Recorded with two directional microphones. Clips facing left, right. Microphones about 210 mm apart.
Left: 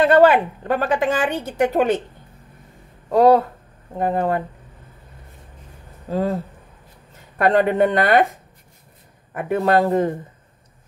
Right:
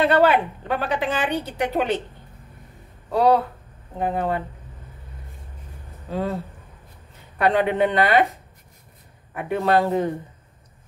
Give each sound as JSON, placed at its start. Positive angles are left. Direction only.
{"t": 0.0, "sound": "a woman's voice", "side_deg": 45}
{"t": 3.1, "sound": "a woman's voice", "side_deg": 45}
{"t": 6.0, "sound": "a woman's voice", "side_deg": 40}
{"t": 9.3, "sound": "a woman's voice", "side_deg": 45}